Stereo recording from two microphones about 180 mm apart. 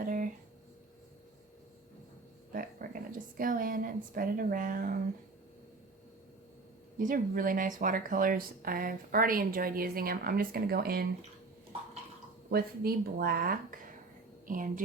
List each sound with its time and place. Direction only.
0.0 s a sound: 50° right (ahead or behind)
2.5 s speech: 50° right (ahead or behind)
7.0 s speech: 50° right (ahead or behind)
12.5 s a woman's voice: 60° right (ahead or behind)